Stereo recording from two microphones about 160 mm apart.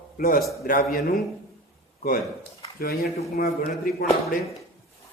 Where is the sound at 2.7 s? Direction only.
70° left (ahead or behind).